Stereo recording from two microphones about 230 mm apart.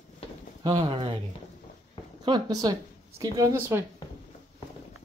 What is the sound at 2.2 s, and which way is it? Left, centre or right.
A woman's voice, centre.